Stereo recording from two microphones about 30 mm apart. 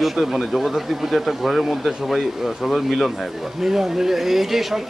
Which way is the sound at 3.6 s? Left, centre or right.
Centre.